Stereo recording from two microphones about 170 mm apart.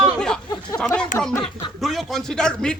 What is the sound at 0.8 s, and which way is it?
Speech, 5° left (ahead or behind).